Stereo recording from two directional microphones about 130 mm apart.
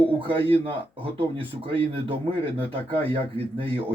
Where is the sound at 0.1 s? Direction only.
45° right (ahead or behind).